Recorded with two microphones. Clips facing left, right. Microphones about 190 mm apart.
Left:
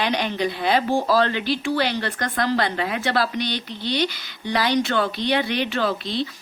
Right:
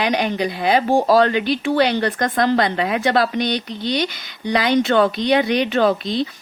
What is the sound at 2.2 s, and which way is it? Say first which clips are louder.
Speech: right 6 dB; 45° right (ahead or behind).